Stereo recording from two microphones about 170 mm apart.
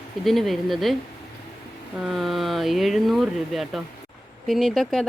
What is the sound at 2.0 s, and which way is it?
Speech, centre (ahead or behind).